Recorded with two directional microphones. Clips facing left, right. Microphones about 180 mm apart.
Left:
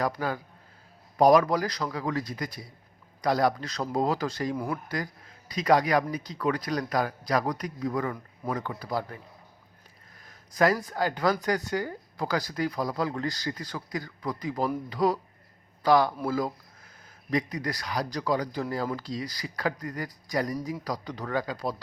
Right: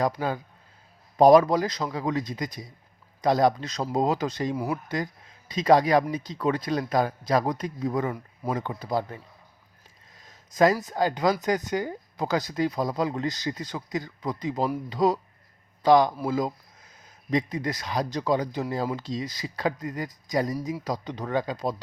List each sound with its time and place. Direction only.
0.0 s speech: 20° right (ahead or behind)
4.5 s speech: 5° right (ahead or behind)
4.9 s speech: 20° right (ahead or behind)
10.2 s a sound: 20° right (ahead or behind)
10.8 s speech: 20° right (ahead or behind)